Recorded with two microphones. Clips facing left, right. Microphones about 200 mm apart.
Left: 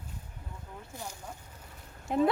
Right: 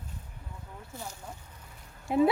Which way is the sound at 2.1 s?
5° right (ahead or behind).